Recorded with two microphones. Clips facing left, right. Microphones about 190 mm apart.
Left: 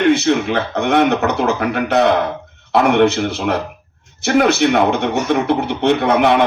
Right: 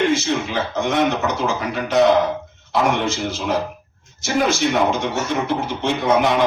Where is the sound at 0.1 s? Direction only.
60° left (ahead or behind).